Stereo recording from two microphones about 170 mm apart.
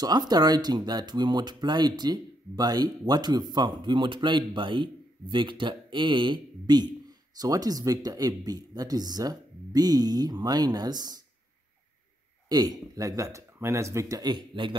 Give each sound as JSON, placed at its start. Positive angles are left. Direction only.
{"t": 0.0, "sound": "speech", "side_deg": -25}
{"t": 12.4, "sound": "speech", "side_deg": -25}